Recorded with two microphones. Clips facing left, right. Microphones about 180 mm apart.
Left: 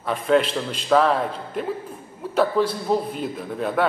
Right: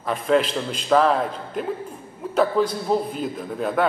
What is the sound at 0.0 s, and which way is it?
A man's voice, centre (ahead or behind).